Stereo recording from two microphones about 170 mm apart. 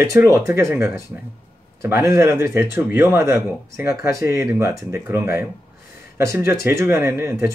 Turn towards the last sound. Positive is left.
turn(degrees=-15)  # may be behind; listen again after turning